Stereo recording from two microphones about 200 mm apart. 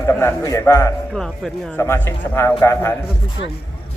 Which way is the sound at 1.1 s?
5° left (ahead or behind).